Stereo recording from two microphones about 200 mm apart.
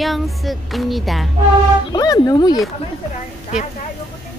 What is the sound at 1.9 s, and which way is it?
Speech, 20° left (ahead or behind).